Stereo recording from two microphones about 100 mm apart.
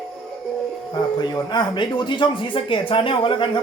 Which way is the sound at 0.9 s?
45° left (ahead or behind).